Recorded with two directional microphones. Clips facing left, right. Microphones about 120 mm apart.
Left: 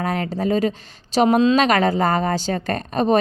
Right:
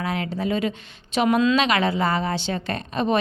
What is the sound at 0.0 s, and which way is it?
Speech, 40° left (ahead or behind).